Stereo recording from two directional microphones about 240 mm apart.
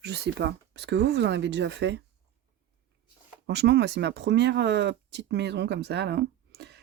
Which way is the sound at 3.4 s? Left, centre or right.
Right.